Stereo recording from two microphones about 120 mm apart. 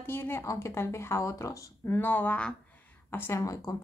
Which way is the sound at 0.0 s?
20° left (ahead or behind).